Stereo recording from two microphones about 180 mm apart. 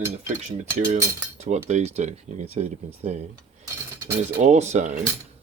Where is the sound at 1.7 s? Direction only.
40° right (ahead or behind).